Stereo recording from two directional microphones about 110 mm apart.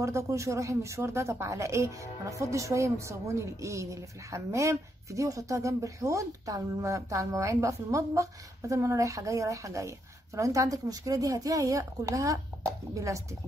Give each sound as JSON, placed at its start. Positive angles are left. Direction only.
{"t": 0.0, "sound": "speech", "side_deg": -30}